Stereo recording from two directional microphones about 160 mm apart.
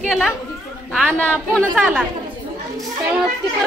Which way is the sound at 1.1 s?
10° left (ahead or behind).